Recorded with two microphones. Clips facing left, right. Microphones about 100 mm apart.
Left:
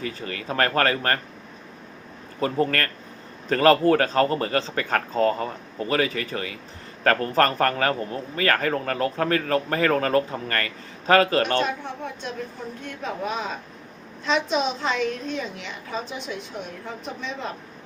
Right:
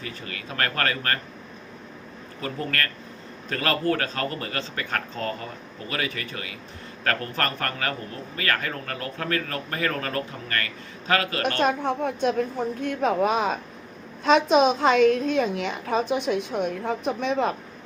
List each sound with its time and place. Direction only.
0.0 s a man's voice: 35° left (ahead or behind)
2.4 s a man's voice: 35° left (ahead or behind)
11.6 s a woman's voice: 55° right (ahead or behind)